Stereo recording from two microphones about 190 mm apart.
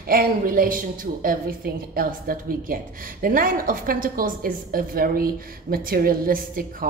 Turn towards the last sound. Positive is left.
turn(degrees=-50)  # may be behind; listen again after turning